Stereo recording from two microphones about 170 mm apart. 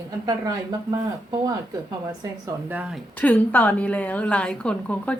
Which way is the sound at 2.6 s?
10° right (ahead or behind).